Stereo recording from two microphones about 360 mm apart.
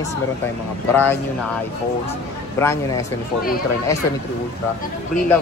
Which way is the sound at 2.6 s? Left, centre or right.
Centre.